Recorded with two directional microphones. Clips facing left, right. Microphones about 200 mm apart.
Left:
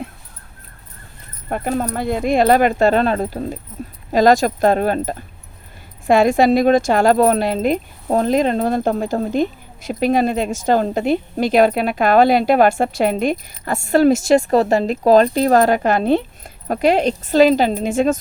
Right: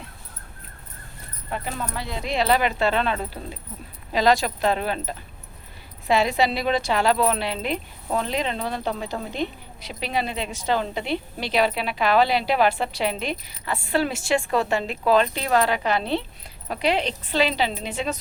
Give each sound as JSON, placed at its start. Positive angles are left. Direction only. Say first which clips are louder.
{"t": 1.5, "sound": "speech", "louder": "left 10 dB", "side_deg": 50}
{"t": 3.8, "sound": "keys jangling", "louder": "left 12 dB", "side_deg": 45}
{"t": 4.1, "sound": "speech", "louder": "left 7 dB", "side_deg": 45}